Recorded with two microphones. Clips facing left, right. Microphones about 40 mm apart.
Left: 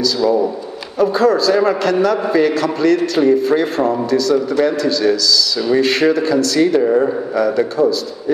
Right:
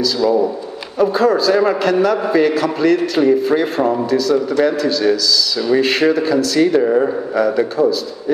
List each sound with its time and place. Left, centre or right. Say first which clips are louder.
0.0 s a man's voice: even; centre